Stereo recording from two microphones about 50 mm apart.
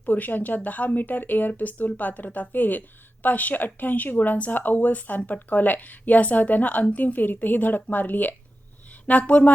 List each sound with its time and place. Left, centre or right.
0.0 s speech: left